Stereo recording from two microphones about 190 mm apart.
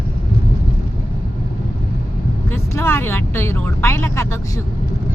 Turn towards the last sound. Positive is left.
turn(degrees=15)  # may be behind; listen again after turning